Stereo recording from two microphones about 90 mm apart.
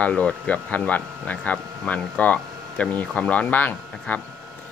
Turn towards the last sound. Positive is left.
turn(degrees=20)  # may be behind; listen again after turning